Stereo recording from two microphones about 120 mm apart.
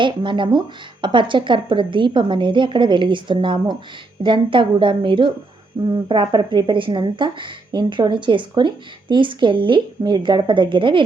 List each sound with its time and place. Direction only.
0.0 s a woman's voice: 40° right (ahead or behind)